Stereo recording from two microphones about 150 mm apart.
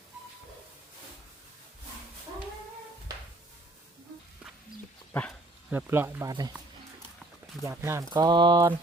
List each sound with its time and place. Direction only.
5.1 s speech: 15° left (ahead or behind)
5.7 s speech: 15° right (ahead or behind)
7.6 s speech: 20° right (ahead or behind)
8.1 s speech: 30° right (ahead or behind)